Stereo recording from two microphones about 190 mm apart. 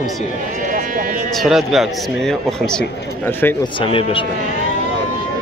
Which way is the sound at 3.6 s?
25° left (ahead or behind).